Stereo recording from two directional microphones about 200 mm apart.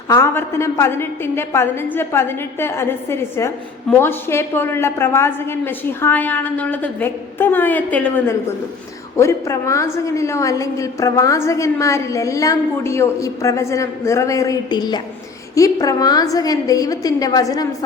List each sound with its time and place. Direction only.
0.1 s a woman's voice: 15° left (ahead or behind)